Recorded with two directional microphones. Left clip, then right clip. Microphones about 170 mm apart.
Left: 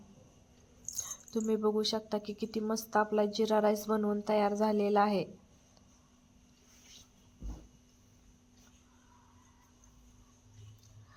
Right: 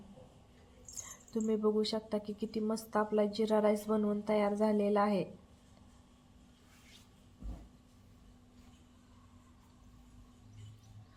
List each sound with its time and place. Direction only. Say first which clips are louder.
0.9 s a woman's voice: left 3 dB; 20° left (ahead or behind)